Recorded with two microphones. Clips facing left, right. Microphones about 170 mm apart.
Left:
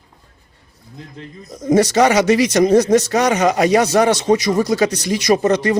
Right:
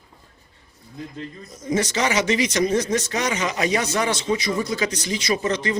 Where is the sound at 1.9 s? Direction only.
45° left (ahead or behind).